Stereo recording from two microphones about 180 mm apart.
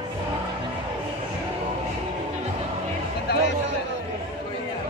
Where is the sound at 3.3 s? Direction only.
65° left (ahead or behind).